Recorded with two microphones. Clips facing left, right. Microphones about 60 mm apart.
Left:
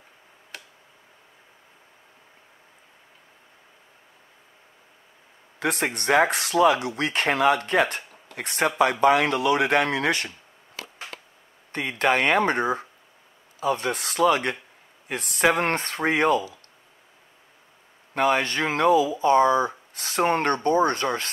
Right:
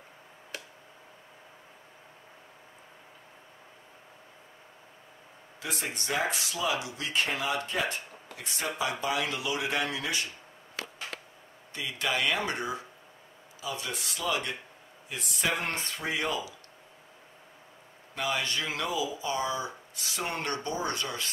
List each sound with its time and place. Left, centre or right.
5.6 s speech: left
11.7 s speech: left
18.1 s speech: left